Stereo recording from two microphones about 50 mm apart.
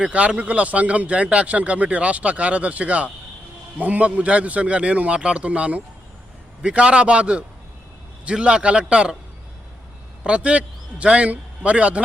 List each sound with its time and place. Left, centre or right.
0.0 s speech: right
10.2 s a man's voice: right